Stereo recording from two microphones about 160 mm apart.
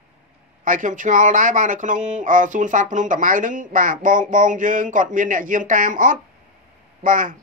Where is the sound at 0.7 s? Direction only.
55° right (ahead or behind).